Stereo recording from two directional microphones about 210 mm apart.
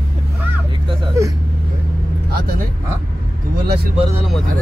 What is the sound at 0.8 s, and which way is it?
Whimper, 15° right (ahead or behind).